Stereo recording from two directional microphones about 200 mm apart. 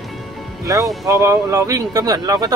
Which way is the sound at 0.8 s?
Centre (ahead or behind).